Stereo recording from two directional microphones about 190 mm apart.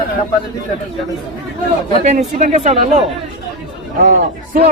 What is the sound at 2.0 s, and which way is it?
Speech, 40° right (ahead or behind).